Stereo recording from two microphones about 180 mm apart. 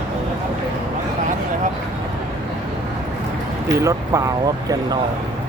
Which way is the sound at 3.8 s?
15° right (ahead or behind).